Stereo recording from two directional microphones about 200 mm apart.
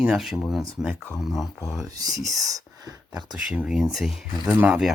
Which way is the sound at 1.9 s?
20° right (ahead or behind).